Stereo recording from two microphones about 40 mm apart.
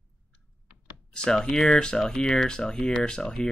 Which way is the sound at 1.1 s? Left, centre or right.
Centre.